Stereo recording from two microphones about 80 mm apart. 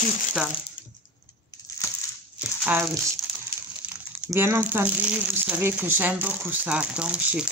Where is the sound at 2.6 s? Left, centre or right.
Right.